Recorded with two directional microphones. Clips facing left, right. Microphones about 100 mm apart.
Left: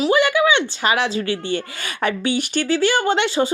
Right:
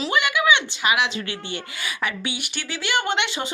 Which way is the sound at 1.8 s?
45° left (ahead or behind).